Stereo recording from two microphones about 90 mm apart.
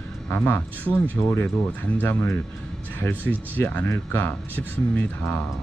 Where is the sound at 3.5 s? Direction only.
20° left (ahead or behind).